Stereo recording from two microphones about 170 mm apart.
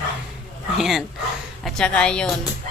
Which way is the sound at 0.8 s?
Centre (ahead or behind).